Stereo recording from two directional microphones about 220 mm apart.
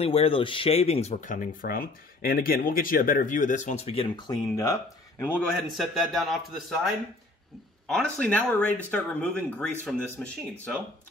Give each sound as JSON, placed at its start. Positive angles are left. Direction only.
{"t": 0.0, "sound": "a man's voice", "side_deg": 25}